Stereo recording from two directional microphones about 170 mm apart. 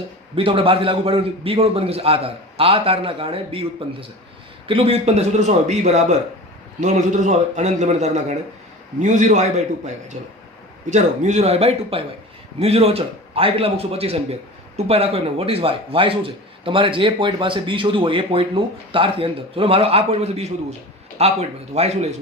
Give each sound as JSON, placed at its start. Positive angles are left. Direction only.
{"t": 0.3, "sound": "a man's voice", "side_deg": -30}